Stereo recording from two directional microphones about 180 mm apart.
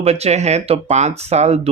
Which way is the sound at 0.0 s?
35° right (ahead or behind).